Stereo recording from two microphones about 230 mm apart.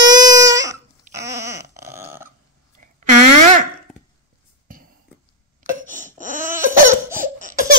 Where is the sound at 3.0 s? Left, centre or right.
Right.